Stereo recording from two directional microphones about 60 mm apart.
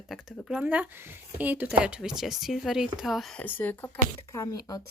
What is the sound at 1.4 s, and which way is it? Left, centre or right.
Speech, right.